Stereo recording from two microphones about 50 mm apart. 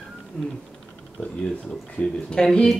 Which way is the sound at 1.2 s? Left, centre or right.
Left.